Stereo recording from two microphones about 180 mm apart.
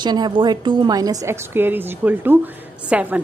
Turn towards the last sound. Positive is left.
turn(degrees=-10)  # may be behind; listen again after turning